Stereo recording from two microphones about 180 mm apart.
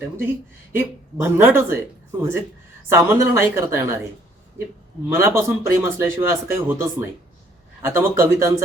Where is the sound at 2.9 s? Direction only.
15° right (ahead or behind).